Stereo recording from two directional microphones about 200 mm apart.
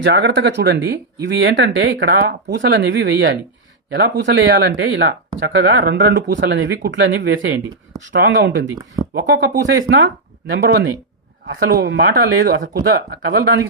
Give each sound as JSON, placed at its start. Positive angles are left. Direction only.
{"t": 0.0, "sound": "speech", "side_deg": -60}